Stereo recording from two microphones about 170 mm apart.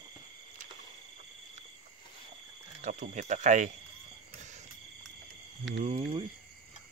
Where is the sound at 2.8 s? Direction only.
45° right (ahead or behind).